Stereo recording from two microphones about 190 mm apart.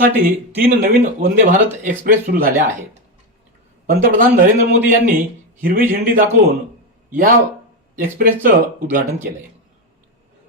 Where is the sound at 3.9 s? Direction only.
50° right (ahead or behind).